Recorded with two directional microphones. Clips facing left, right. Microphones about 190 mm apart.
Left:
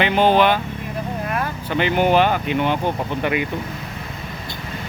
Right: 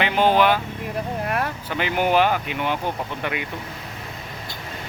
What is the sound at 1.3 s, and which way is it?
Vehicle, 65° right (ahead or behind).